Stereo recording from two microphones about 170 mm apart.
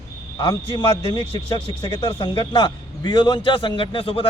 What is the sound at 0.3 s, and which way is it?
A man's voice, 25° left (ahead or behind).